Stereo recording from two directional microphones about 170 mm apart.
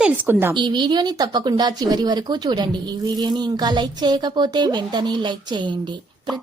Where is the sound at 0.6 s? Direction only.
25° right (ahead or behind).